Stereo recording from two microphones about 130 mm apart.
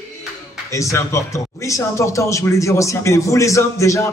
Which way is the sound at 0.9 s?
25° left (ahead or behind).